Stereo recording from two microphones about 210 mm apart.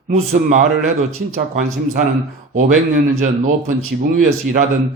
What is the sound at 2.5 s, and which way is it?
Speech, 40° right (ahead or behind).